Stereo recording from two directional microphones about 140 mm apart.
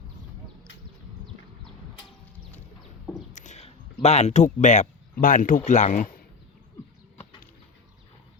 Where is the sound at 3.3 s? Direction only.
60° left (ahead or behind).